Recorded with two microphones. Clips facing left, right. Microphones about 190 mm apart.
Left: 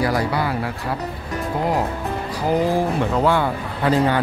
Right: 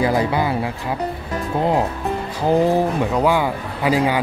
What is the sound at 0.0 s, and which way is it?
Speech, 20° right (ahead or behind).